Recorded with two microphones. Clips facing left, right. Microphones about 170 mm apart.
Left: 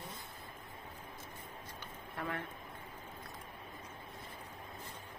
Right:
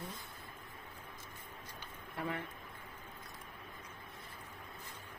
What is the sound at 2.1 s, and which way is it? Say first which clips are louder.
Speech: right 1 dB; 15° right (ahead or behind).